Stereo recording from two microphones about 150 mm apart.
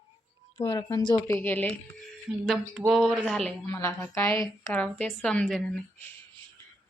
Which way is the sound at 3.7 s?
20° left (ahead or behind).